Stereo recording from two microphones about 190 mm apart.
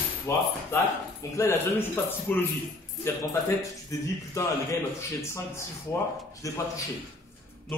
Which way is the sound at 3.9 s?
15° left (ahead or behind).